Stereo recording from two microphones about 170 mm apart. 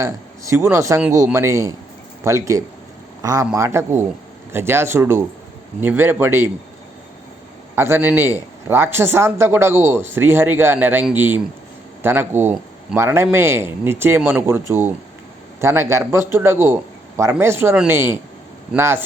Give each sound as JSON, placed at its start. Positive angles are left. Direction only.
{"t": 0.0, "sound": "a man's voice", "side_deg": -20}
{"t": 7.8, "sound": "a man's voice", "side_deg": -10}